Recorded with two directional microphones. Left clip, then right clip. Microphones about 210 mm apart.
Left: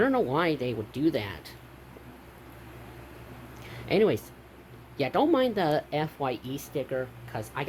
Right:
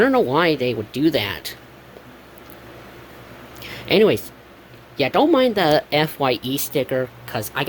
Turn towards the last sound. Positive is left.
turn(degrees=-55)  # may be behind; listen again after turning